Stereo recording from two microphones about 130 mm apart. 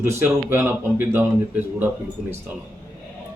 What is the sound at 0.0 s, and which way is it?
A man's voice, 20° right (ahead or behind).